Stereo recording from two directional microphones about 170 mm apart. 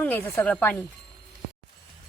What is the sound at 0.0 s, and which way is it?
Speech, 10° left (ahead or behind).